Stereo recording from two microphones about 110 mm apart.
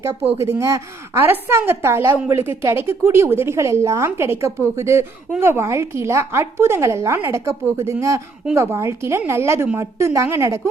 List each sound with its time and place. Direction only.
0.3 s speech: 25° right (ahead or behind)